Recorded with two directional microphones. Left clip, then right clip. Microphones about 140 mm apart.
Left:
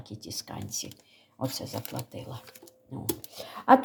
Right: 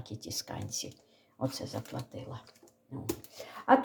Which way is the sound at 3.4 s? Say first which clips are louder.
Left 5 dB; 35° left (ahead or behind).